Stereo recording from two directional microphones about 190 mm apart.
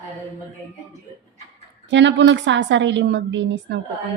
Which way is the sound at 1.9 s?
70° right (ahead or behind).